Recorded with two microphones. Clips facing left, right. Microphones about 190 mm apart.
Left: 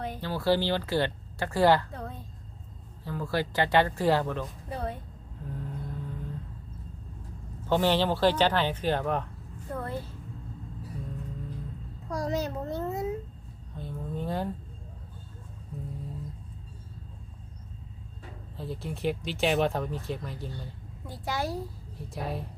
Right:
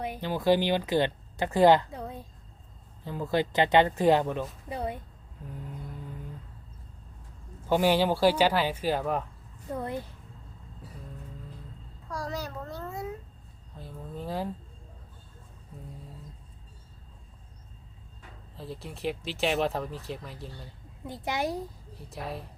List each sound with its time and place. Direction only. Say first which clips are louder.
0.0 s speech: right 2 dB; 15° right (ahead or behind)
7.7 s speech: right 1 dB; 10° right (ahead or behind)
9.7 s speech: right 1 dB; 15° right (ahead or behind)
12.0 s a child's voice: left 5 dB; 20° left (ahead or behind)
13.7 s speech: left 4 dB; centre (ahead or behind)
18.5 s speech: left 4 dB; centre (ahead or behind)
21.1 s speech: right 1 dB; 20° right (ahead or behind)
21.9 s speech: left 3 dB; centre (ahead or behind)